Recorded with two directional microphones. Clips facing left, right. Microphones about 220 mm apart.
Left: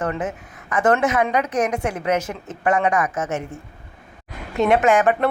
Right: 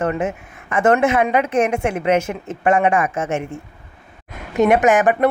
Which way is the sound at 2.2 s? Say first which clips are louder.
Right 5 dB; 10° right (ahead or behind).